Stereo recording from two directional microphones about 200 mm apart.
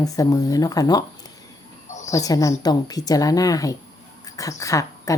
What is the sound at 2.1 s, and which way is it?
Speech, 15° left (ahead or behind).